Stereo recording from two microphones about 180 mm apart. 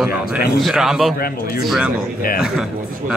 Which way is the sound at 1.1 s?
55° left (ahead or behind).